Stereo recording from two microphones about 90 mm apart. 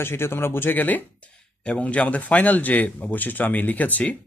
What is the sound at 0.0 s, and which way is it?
Speech, 25° left (ahead or behind).